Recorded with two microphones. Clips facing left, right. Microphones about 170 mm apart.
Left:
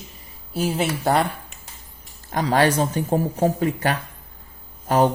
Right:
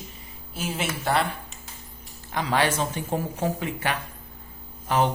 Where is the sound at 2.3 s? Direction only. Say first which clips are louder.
Left 5 dB; 40° left (ahead or behind).